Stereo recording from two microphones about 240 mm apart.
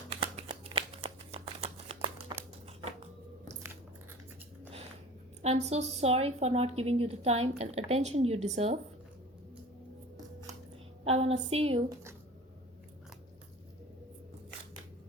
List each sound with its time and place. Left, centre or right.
0.1 s shuffling cards: right
5.4 s a woman's voice: right
11.0 s a woman's voice: right